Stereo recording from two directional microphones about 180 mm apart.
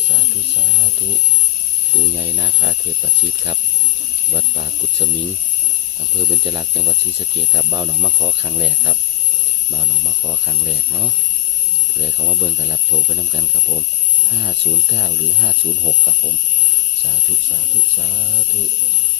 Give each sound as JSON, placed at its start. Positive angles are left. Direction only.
{"t": 2.1, "sound": "speech", "side_deg": -15}
{"t": 4.3, "sound": "speech", "side_deg": -25}
{"t": 6.4, "sound": "speech", "side_deg": -25}
{"t": 10.7, "sound": "speech", "side_deg": -25}
{"t": 12.2, "sound": "speech", "side_deg": -10}
{"t": 14.9, "sound": "speech", "side_deg": -15}